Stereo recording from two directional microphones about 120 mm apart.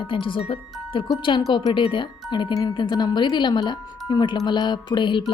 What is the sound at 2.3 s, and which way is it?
Speech, 35° left (ahead or behind).